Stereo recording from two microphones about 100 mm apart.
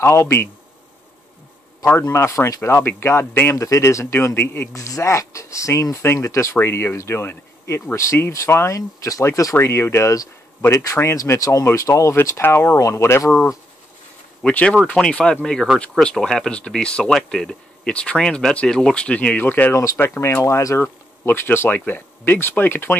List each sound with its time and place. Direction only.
0.0 s speech: 25° left (ahead or behind)
1.9 s speech: 25° left (ahead or behind)
14.4 s speech: 10° left (ahead or behind)